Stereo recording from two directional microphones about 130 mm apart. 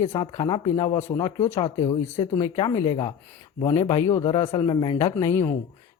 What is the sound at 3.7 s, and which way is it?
Speech, 50° left (ahead or behind).